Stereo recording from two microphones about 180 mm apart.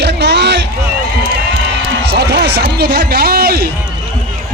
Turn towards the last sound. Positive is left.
turn(degrees=-60)  # may be behind; listen again after turning